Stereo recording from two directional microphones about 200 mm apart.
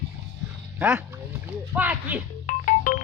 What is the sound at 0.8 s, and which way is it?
Speech, 5° right (ahead or behind).